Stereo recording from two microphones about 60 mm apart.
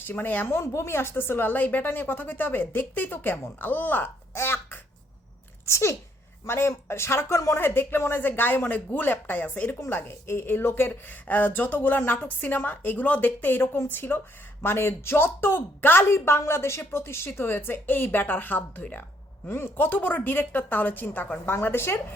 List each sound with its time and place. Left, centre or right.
0.0 s a woman's voice: left
0.6 s a woman's voice: left
4.4 s a sound: left
5.6 s a man's voice: left
7.6 s a woman's voice: left
19.5 s a woman's voice: left